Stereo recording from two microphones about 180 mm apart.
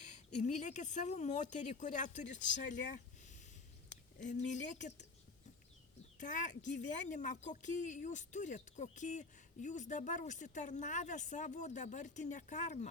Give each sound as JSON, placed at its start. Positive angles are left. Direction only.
{"t": 0.0, "sound": "speech", "side_deg": 40}
{"t": 4.5, "sound": "speech", "side_deg": 45}
{"t": 6.1, "sound": "speech", "side_deg": 45}